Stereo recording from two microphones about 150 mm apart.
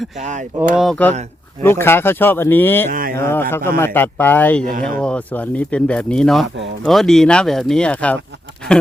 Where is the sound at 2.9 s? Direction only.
70° right (ahead or behind).